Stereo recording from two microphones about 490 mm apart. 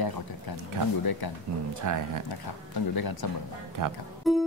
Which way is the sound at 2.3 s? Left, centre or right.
Left.